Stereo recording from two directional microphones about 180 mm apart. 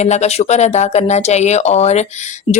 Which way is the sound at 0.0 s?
40° left (ahead or behind).